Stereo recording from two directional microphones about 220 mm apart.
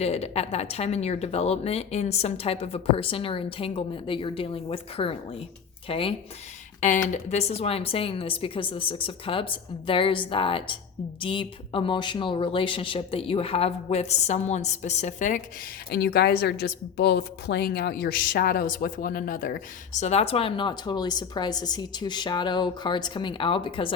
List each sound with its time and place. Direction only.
0.0 s speech: 30° left (ahead or behind)
15.9 s speech: 45° left (ahead or behind); by 23.9 s 20° left (ahead or behind)